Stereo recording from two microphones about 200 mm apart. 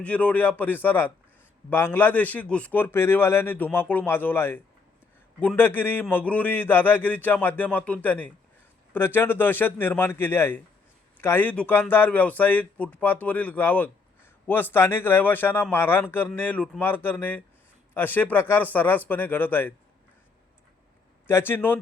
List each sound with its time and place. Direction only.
0.0 s a man's voice: 5° left (ahead or behind)
21.2 s a man's voice: 10° left (ahead or behind)